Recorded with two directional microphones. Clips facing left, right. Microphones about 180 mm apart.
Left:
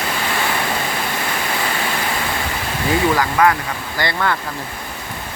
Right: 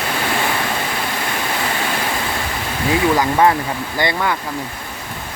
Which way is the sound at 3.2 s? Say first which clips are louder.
Right 2 dB; 25° right (ahead or behind).